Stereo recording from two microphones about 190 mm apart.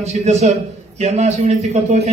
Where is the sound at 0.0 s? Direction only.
35° right (ahead or behind).